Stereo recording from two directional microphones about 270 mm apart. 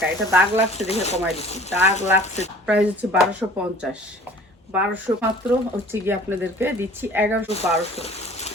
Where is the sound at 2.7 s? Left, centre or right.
Centre.